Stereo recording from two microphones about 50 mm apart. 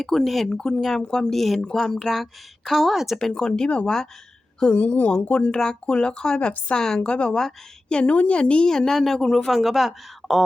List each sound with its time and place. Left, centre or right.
0.0 s speech: centre
0.5 s a woman's voice: centre
1.3 s a woman's voice: centre
3.3 s a woman's voice: centre
4.7 s a woman's voice: left; by 9.5 s centre
9.5 s speech: centre